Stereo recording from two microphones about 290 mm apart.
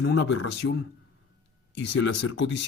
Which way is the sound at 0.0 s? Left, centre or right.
Left.